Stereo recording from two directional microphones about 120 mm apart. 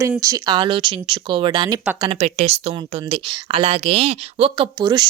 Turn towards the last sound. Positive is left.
turn(degrees=-35)  # may be behind; listen again after turning